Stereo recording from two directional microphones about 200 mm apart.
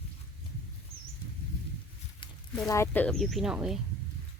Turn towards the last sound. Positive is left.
turn(degrees=-5)  # may be behind; listen again after turning